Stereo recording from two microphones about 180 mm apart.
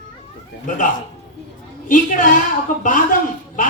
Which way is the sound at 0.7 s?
45° left (ahead or behind).